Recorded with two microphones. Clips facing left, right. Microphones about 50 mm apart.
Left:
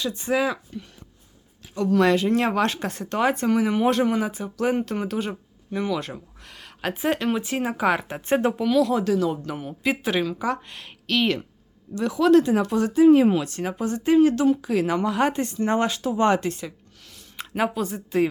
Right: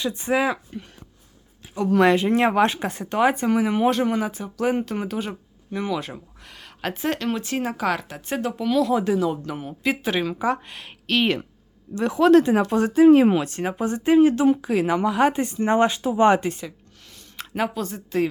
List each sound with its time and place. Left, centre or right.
0.0 s speech: right
1.6 s a sound: centre
1.9 s speech: right; by 8.5 s left
8.6 s speech: centre
9.3 s speech: centre
10.2 s speech: centre
11.9 s speech: right
13.1 s speech: right
14.7 s speech: centre
16.6 s a sound: centre